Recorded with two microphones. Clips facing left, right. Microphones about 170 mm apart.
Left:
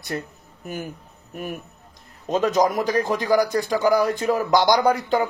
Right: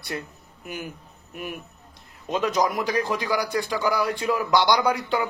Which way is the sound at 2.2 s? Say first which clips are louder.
Left 4 dB; 45° left (ahead or behind).